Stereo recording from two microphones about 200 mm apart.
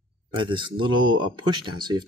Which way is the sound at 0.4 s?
25° right (ahead or behind).